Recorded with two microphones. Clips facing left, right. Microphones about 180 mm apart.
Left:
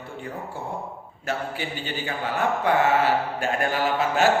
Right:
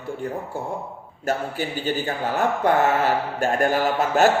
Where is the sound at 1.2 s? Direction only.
40° right (ahead or behind).